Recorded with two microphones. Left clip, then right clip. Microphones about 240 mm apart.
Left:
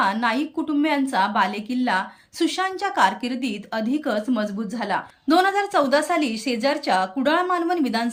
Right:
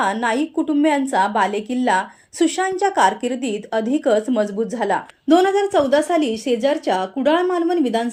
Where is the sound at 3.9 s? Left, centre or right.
Left.